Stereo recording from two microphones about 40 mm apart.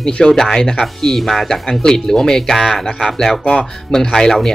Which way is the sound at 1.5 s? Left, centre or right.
Centre.